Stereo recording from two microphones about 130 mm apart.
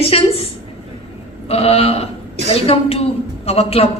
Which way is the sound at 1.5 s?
50° left (ahead or behind).